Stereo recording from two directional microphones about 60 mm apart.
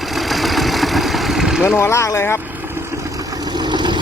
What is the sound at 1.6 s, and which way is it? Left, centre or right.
Speech, left.